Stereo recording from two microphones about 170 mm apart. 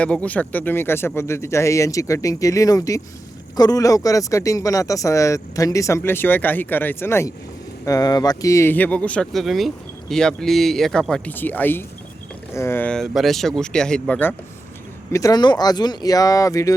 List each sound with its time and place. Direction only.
0.0 s speech: 5° left (ahead or behind)
15.1 s speech: 20° left (ahead or behind)